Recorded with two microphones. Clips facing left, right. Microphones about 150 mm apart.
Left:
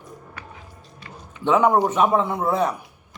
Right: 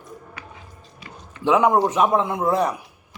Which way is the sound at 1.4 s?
5° right (ahead or behind).